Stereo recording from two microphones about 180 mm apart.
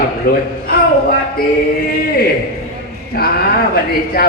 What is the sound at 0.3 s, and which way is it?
Speech, 55° left (ahead or behind).